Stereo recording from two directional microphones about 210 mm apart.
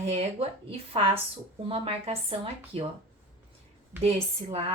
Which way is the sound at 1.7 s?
30° right (ahead or behind).